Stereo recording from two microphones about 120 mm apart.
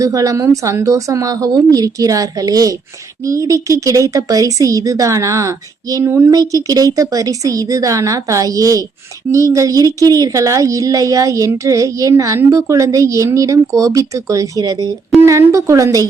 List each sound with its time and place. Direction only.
0.0 s speech: 30° right (ahead or behind)